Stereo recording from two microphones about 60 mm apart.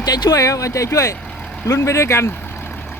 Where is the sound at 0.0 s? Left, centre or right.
Left.